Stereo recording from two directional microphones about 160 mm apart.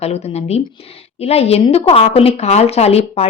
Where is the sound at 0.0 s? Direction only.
40° left (ahead or behind).